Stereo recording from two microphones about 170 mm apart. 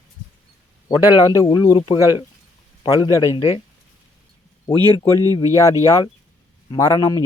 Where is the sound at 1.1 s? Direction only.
25° left (ahead or behind).